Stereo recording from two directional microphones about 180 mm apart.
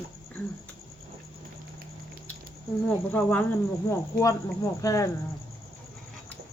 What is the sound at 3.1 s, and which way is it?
Speech, 10° left (ahead or behind).